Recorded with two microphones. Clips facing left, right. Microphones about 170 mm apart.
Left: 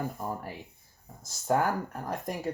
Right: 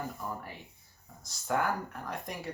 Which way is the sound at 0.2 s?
50° left (ahead or behind).